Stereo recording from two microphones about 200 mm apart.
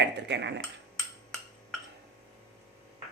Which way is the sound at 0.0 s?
60° right (ahead or behind).